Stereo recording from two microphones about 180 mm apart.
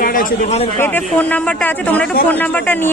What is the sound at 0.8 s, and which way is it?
Speech, 10° left (ahead or behind).